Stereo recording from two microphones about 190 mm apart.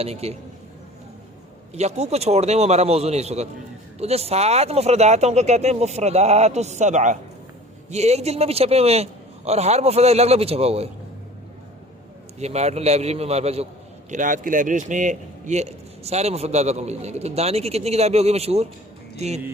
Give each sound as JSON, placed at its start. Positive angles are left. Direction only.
{"t": 0.0, "sound": "a man's voice", "side_deg": -35}
{"t": 1.7, "sound": "a man's voice", "side_deg": -35}
{"t": 12.4, "sound": "a man's voice", "side_deg": -35}